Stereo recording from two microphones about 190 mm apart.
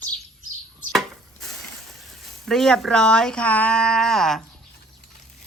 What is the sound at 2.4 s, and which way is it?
Speech, centre (ahead or behind).